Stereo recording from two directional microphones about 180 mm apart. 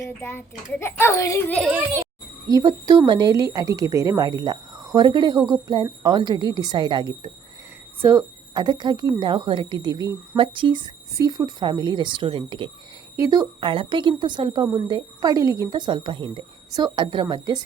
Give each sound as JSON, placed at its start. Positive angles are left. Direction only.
{"t": 0.0, "sound": "a child's voice", "side_deg": 15}
{"t": 1.5, "sound": "a child's voice", "side_deg": -5}
{"t": 2.5, "sound": "a woman's voice", "side_deg": -20}